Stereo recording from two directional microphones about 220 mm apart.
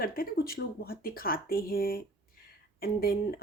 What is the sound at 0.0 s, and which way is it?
A woman's voice, 40° left (ahead or behind).